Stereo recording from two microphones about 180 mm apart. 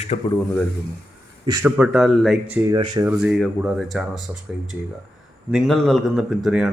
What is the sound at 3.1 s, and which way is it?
Speech, 5° right (ahead or behind).